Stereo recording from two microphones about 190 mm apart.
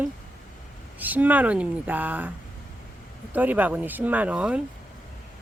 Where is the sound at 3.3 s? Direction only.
10° right (ahead or behind).